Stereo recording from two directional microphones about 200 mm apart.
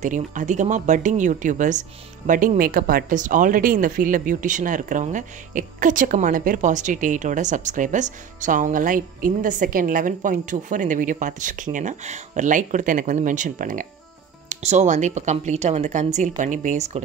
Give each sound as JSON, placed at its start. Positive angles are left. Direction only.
{"t": 0.0, "sound": "speech", "side_deg": -40}